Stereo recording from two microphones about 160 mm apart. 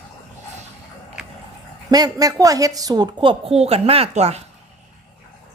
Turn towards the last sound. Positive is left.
turn(degrees=-40)  # may be behind; listen again after turning